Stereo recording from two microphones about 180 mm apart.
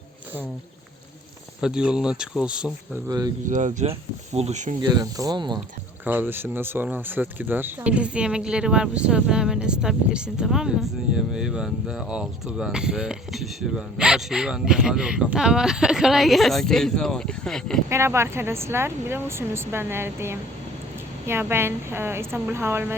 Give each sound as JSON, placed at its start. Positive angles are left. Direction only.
{"t": 1.6, "sound": "speech", "side_deg": -5}
{"t": 3.1, "sound": "speech", "side_deg": -20}
{"t": 3.5, "sound": "speech", "side_deg": -40}
{"t": 4.8, "sound": "speech", "side_deg": -20}
{"t": 6.1, "sound": "speech", "side_deg": -10}
{"t": 17.8, "sound": "speech", "side_deg": -15}